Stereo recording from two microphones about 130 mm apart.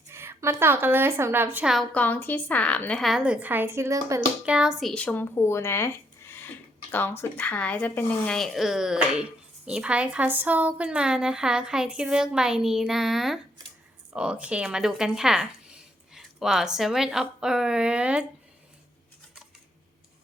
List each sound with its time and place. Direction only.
0.1 s speech: 20° right (ahead or behind)
1.6 s a woman's voice: centre (ahead or behind)
1.9 s a woman's voice: 10° left (ahead or behind); by 4.2 s 25° right (ahead or behind)
4.4 s a woman's voice: 5° right (ahead or behind)